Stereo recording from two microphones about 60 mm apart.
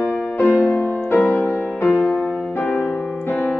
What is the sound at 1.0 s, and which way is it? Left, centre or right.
Music, left.